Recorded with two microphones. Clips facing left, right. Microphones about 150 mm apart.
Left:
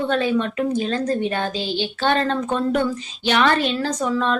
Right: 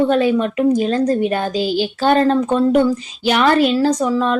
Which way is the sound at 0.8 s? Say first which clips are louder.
Right 5 dB; 35° right (ahead or behind).